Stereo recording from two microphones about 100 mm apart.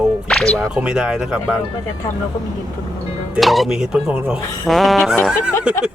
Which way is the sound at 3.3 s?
Centre (ahead or behind).